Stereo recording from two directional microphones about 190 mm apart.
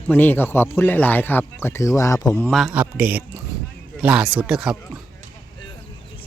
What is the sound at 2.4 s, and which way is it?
A man's voice, centre (ahead or behind).